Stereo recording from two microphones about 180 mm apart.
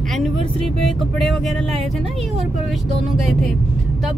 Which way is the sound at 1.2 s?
Centre (ahead or behind).